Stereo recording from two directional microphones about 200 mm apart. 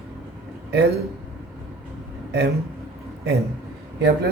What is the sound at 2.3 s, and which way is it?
Speech, 55° right (ahead or behind).